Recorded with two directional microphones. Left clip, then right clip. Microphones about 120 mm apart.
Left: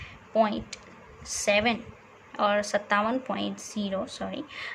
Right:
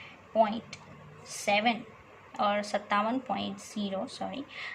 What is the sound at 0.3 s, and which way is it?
Speech, 55° left (ahead or behind).